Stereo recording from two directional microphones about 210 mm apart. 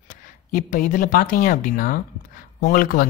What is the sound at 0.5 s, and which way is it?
Speech, 40° left (ahead or behind).